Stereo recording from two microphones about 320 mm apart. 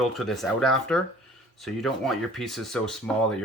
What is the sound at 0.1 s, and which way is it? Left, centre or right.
Speech, centre.